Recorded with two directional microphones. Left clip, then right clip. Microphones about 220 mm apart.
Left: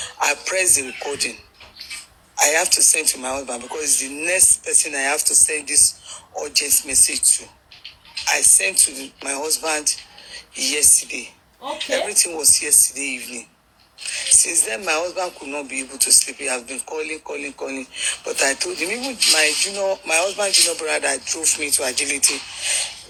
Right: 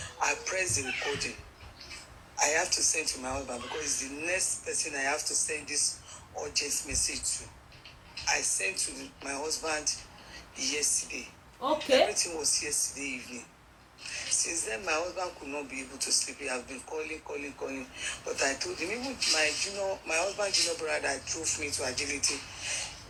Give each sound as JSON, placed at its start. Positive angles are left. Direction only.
{"t": 0.0, "sound": "a man's voice", "side_deg": 50}